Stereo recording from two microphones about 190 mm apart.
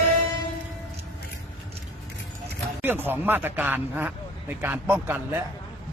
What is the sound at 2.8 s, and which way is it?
A man's voice, 10° right (ahead or behind).